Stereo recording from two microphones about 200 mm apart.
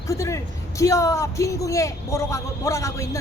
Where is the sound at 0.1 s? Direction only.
15° left (ahead or behind).